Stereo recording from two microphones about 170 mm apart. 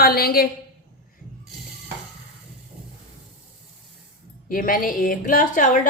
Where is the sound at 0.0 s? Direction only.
65° left (ahead or behind).